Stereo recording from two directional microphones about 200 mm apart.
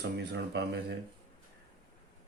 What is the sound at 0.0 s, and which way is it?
Speech, 60° right (ahead or behind).